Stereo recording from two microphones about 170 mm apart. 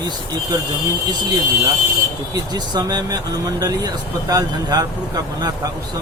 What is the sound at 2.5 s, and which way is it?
Speech, 25° right (ahead or behind).